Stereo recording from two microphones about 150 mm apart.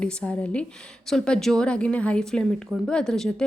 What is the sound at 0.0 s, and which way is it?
A woman's voice, 10° left (ahead or behind).